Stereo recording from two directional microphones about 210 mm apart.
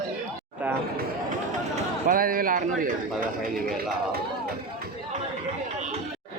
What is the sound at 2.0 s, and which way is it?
Speech, 40° right (ahead or behind).